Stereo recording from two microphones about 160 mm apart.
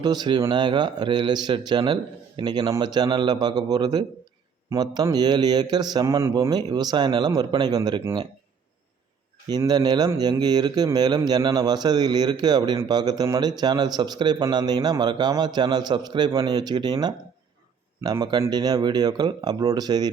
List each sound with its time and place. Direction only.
0.0 s speech: 25° right (ahead or behind)
9.5 s speech: 25° right (ahead or behind)